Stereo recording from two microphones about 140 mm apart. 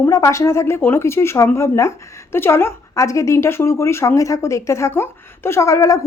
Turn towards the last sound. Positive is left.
turn(degrees=25)  # may be behind; listen again after turning